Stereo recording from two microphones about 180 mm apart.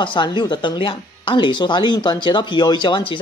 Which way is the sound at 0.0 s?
25° left (ahead or behind).